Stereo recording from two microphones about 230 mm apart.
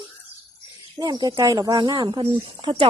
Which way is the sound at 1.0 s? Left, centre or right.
Centre.